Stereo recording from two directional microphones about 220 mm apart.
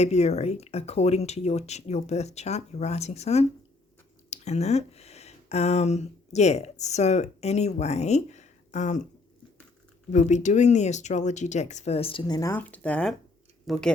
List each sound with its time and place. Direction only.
0.0 s speech: 30° left (ahead or behind)
10.1 s speech: 35° left (ahead or behind); by 13.8 s centre (ahead or behind)